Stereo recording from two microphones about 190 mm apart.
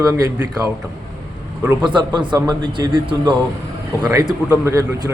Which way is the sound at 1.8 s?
25° right (ahead or behind).